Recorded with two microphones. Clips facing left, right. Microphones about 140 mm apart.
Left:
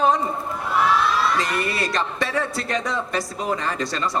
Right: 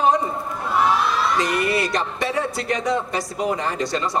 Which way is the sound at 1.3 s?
20° right (ahead or behind).